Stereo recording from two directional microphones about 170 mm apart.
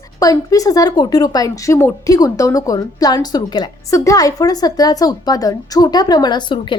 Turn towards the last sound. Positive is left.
turn(degrees=25)  # may be behind; listen again after turning